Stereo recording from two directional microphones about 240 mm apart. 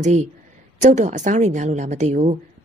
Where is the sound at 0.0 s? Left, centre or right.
Right.